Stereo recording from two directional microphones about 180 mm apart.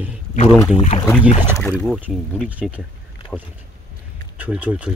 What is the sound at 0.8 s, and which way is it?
Speech, 35° left (ahead or behind).